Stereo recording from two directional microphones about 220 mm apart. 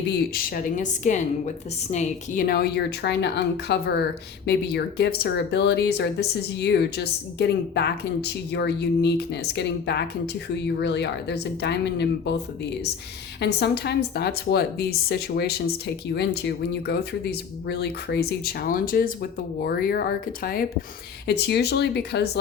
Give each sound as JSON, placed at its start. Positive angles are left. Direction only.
{"t": 0.2, "sound": "a woman's voice", "side_deg": 40}
{"t": 13.4, "sound": "a woman's voice", "side_deg": 50}